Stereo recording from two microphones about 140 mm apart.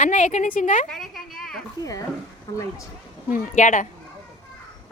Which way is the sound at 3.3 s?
65° left (ahead or behind).